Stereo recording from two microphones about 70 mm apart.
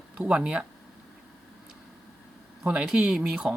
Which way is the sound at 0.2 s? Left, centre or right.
Centre.